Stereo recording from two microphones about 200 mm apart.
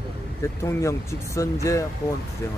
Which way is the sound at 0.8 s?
15° left (ahead or behind).